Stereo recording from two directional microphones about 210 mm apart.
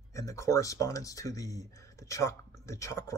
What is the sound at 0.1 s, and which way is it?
Speech, 15° left (ahead or behind).